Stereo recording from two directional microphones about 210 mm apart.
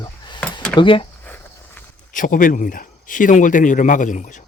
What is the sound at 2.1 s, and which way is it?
Speech, 40° left (ahead or behind).